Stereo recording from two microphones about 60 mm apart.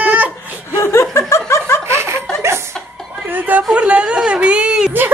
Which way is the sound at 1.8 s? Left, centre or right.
Right.